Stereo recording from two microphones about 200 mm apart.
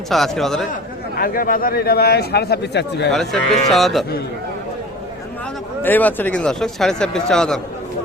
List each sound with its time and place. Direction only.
0.1 s speech: centre (ahead or behind)
1.1 s a man's voice: 45° left (ahead or behind)
3.1 s speech: centre (ahead or behind)
5.8 s speech: 10° left (ahead or behind)